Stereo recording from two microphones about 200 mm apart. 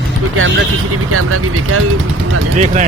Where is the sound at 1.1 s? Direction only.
90° right.